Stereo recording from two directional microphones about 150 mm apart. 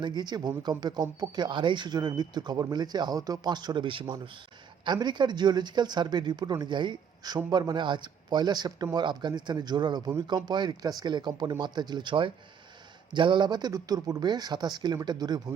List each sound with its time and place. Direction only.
0.0 s speech: 30° right (ahead or behind)